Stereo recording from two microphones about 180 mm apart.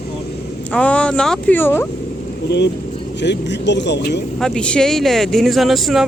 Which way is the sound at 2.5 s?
70° left (ahead or behind).